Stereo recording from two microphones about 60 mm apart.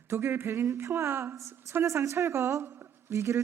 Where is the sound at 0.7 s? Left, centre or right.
Right.